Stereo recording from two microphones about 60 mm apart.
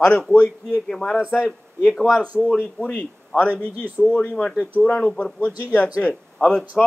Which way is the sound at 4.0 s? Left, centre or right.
Centre.